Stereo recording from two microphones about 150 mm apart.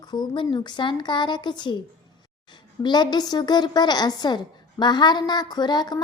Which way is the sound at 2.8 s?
30° left (ahead or behind).